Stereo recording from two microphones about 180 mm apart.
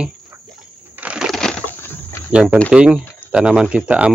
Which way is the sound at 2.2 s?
5° right (ahead or behind).